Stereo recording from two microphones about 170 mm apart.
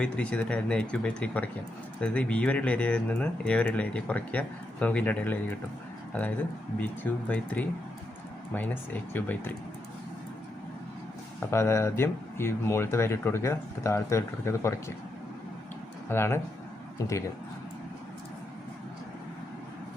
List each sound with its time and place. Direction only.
0.0 s speech: 5° left (ahead or behind)
6.7 s speech: 10° left (ahead or behind)
11.3 s speech: 15° left (ahead or behind)
16.0 s speech: 15° left (ahead or behind)